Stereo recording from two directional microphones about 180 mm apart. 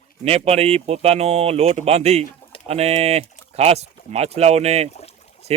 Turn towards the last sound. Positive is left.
turn(degrees=-35)  # may be behind; listen again after turning